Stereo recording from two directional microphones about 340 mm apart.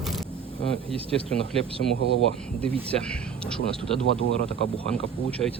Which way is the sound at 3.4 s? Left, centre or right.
Centre.